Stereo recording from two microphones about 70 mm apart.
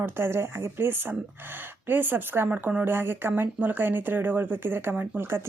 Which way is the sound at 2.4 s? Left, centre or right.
Right.